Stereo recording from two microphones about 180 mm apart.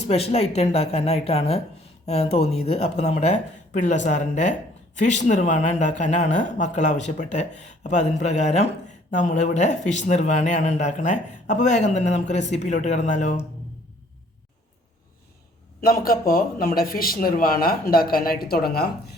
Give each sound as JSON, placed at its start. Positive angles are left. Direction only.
{"t": 0.0, "sound": "speech", "side_deg": 35}
{"t": 15.8, "sound": "speech", "side_deg": 55}